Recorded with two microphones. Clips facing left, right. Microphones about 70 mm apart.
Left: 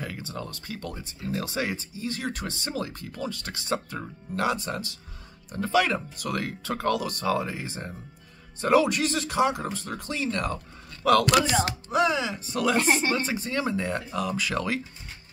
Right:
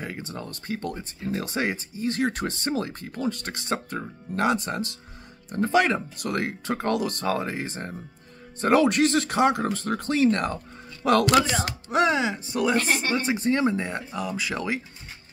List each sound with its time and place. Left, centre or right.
0.0 s speech: right
12.7 s speech: left
13.4 s speech: right